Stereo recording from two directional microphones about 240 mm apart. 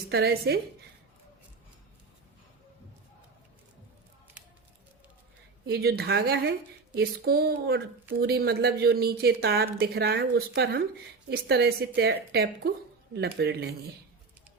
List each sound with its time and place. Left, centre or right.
0.1 s speech: right
5.6 s speech: right